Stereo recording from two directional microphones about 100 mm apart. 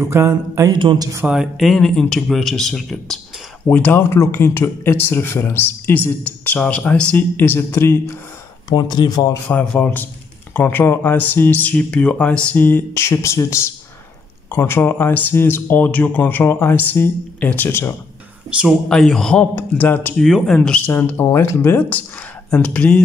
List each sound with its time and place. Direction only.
0.0 s speech: 25° right (ahead or behind)
0.7 s speech: 45° right (ahead or behind)
1.2 s speech: 5° right (ahead or behind)
3.6 s speech: 20° left (ahead or behind)
8.7 s speech: 45° left (ahead or behind)
9.8 s speech: 20° left (ahead or behind)
18.9 s speech: 5° left (ahead or behind)
19.5 s speech: 15° left (ahead or behind)
20.2 s speech: centre (ahead or behind)